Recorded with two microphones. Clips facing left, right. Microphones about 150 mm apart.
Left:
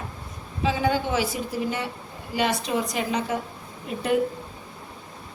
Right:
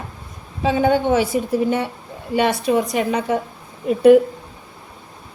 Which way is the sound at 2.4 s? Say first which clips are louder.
Right 7 dB; 60° right (ahead or behind).